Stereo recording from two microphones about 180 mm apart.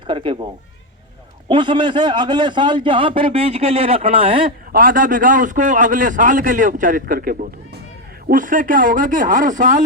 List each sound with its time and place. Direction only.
0.1 s a man's voice: 25° right (ahead or behind)
1.5 s a man's voice: 25° right (ahead or behind)
4.7 s a man's voice: 50° right (ahead or behind)